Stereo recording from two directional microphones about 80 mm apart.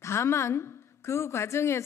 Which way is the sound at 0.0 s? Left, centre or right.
Left.